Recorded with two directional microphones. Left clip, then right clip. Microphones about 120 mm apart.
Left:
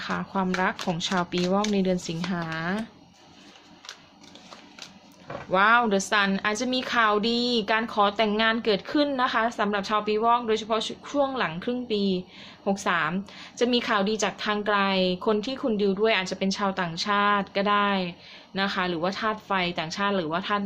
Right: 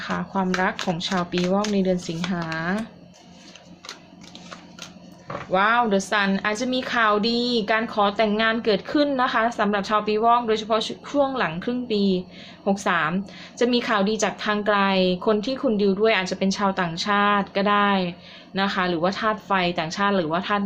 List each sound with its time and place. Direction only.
0.2 s a woman's voice: 15° left (ahead or behind)
5.5 s a woman's voice: 20° left (ahead or behind); by 20.7 s centre (ahead or behind)